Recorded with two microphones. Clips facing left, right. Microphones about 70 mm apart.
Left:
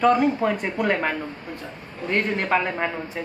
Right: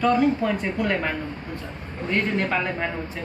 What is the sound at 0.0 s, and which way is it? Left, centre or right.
A woman's voice, left.